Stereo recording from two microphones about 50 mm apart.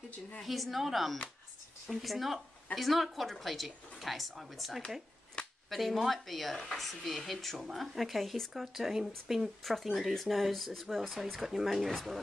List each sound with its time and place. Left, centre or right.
0.4 s speech: centre
5.4 s a sound: left
5.7 s speech: centre